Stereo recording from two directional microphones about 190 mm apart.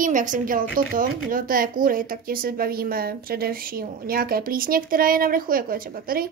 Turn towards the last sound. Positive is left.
turn(degrees=-50)  # may be behind; listen again after turning